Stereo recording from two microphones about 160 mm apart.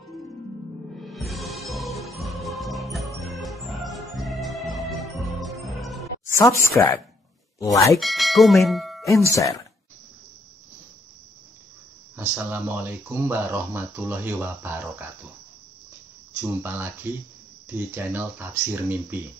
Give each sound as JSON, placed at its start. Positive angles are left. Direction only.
{"t": 0.9, "sound": "music", "side_deg": 0}
{"t": 5.4, "sound": "jingle bell", "side_deg": 0}
{"t": 6.3, "sound": "speech", "side_deg": 20}
{"t": 8.0, "sound": "speech", "side_deg": 0}
{"t": 9.3, "sound": "speech", "side_deg": 20}
{"t": 12.2, "sound": "speech", "side_deg": -10}
{"t": 16.3, "sound": "speech", "side_deg": -10}